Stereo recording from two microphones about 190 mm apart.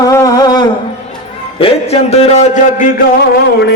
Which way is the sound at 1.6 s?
30° left (ahead or behind).